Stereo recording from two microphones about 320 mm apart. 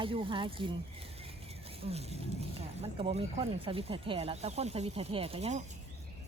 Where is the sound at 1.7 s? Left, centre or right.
Centre.